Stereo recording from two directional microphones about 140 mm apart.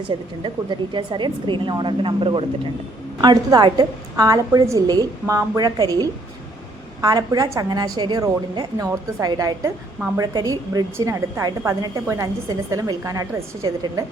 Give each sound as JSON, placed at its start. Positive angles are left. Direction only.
{"t": 0.1, "sound": "a woman's voice", "side_deg": -35}